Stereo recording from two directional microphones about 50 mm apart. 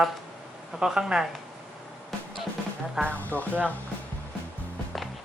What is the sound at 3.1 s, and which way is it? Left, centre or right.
Speech, left.